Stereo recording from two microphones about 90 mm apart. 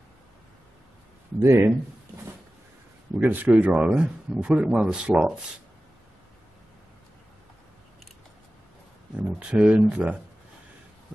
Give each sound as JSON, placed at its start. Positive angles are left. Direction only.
{"t": 1.4, "sound": "speech", "side_deg": -25}
{"t": 3.2, "sound": "speech", "side_deg": -20}
{"t": 9.4, "sound": "speech", "side_deg": -10}